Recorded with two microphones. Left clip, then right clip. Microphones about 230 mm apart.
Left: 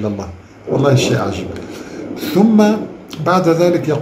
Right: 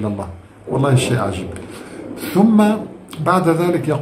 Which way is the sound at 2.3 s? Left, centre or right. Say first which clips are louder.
Left 2 dB; centre.